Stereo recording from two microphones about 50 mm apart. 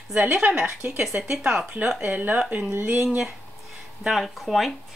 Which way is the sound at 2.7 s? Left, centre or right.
Right.